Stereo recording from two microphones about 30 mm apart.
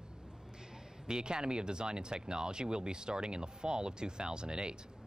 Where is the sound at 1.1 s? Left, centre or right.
Right.